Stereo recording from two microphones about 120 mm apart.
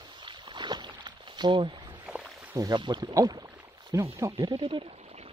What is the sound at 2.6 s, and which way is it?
Speech, 35° right (ahead or behind).